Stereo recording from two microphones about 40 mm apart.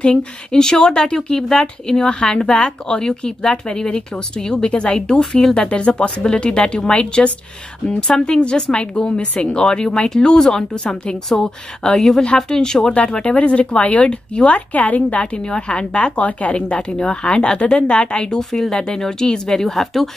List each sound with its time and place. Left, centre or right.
0.0 s a woman's voice: left
5.7 s a woman's voice: left
13.1 s speech: left
14.5 s a woman's voice: left
15.5 s speech: left
19.7 s speech: centre